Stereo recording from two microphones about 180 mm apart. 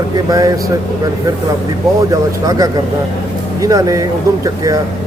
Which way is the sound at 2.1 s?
20° right (ahead or behind).